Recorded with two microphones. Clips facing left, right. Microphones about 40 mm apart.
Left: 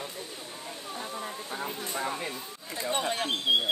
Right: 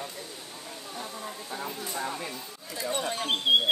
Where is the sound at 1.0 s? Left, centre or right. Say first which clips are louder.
Left 1 dB; left.